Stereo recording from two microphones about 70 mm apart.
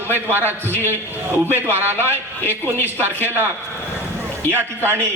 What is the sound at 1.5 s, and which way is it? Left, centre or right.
A man's voice, right.